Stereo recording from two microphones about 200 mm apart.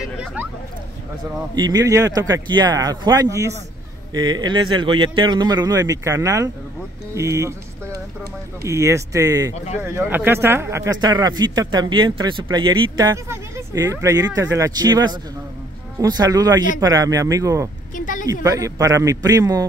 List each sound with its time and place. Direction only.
0.2 s a sound: 5° right (ahead or behind)
1.5 s speech: 20° right (ahead or behind)
7.2 s music: 15° right (ahead or behind)
8.6 s speech: 15° right (ahead or behind)
17.9 s a sound: 40° left (ahead or behind)
18.2 s speech: 15° right (ahead or behind)